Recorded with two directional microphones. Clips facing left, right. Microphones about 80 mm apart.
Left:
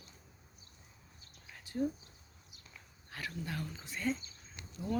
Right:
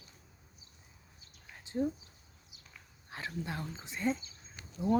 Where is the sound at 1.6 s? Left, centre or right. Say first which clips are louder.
Right 2 dB; right.